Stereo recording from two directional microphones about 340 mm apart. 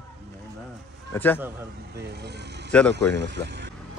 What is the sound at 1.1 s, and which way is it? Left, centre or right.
Speech, centre.